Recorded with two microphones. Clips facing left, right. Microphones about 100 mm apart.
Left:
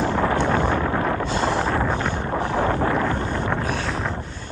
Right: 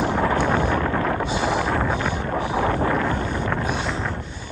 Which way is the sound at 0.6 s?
60° right (ahead or behind).